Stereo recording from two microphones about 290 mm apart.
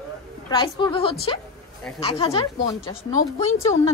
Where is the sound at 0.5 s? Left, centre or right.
Centre.